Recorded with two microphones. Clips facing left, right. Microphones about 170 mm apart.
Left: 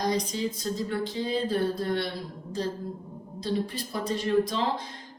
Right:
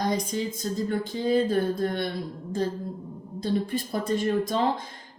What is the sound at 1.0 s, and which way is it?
A woman's voice, 50° right (ahead or behind).